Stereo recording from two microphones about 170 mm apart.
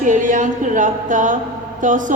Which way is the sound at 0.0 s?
50° right (ahead or behind).